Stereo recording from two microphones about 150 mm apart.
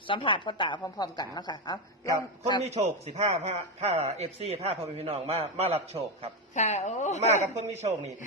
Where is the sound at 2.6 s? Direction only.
45° right (ahead or behind).